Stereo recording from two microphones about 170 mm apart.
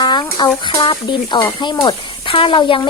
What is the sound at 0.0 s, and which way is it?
Speech, 25° left (ahead or behind).